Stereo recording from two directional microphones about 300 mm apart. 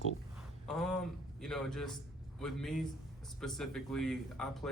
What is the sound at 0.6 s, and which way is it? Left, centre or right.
Speech, centre.